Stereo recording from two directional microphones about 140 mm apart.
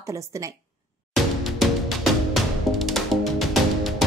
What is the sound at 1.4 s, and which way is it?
Music, centre (ahead or behind).